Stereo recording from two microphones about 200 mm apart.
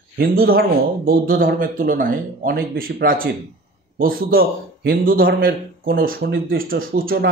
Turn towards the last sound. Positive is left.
turn(degrees=-50)  # may be behind; listen again after turning